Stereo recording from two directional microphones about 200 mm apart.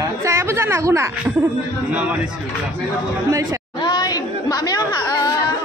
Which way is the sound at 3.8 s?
20° left (ahead or behind).